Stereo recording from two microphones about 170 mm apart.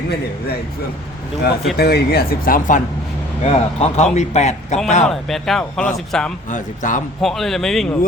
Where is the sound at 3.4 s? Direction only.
35° left (ahead or behind).